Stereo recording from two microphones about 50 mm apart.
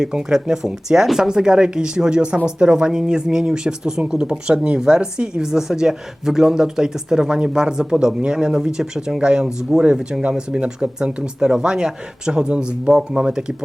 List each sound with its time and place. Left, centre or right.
0.0 s speech: centre